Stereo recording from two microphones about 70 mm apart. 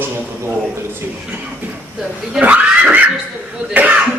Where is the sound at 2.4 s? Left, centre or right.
Right.